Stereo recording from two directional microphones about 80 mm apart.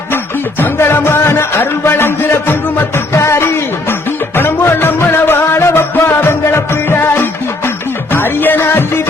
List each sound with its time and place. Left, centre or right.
0.6 s music: left
8.1 s music: left